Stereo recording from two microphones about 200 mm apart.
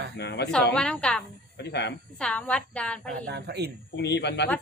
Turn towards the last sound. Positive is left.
turn(degrees=60)  # may be behind; listen again after turning